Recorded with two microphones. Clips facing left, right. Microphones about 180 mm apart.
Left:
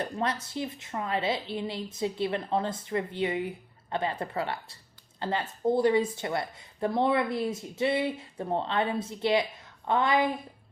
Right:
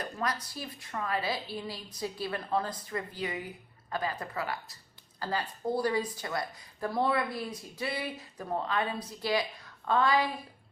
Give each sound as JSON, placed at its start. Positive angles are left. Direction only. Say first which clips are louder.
{"t": 0.0, "sound": "speech", "louder": "left 4 dB", "side_deg": 25}